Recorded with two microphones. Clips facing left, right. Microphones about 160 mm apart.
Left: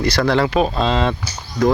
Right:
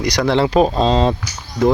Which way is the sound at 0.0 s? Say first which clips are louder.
Right 1 dB; 15° right (ahead or behind).